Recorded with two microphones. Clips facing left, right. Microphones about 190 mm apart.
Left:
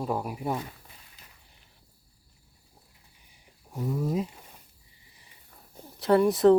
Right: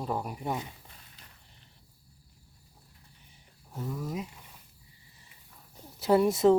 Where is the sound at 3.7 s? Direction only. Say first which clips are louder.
Left 5 dB; 10° left (ahead or behind).